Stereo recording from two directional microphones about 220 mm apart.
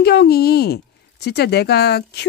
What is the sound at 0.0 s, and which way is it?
Speech, 50° left (ahead or behind).